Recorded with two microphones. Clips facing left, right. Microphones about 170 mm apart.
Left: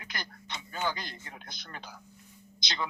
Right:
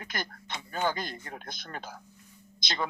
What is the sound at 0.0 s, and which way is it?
A man's voice, 50° right (ahead or behind).